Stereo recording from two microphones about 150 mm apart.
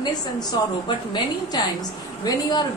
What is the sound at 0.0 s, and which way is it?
A woman's voice, 25° left (ahead or behind).